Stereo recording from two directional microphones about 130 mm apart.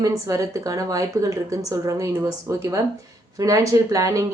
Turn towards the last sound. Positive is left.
turn(degrees=-25)  # may be behind; listen again after turning